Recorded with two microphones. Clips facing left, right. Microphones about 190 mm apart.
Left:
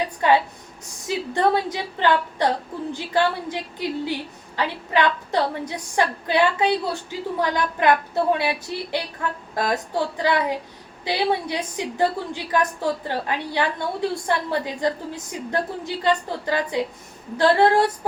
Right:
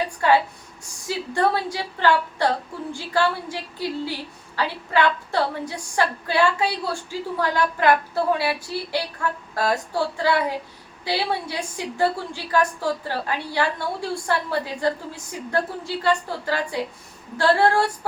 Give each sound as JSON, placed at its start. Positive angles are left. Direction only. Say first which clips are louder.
{"t": 0.2, "sound": "a woman's voice", "louder": "even", "side_deg": 20}